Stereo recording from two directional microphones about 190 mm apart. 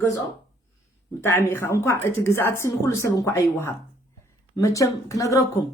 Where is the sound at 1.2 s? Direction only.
10° left (ahead or behind).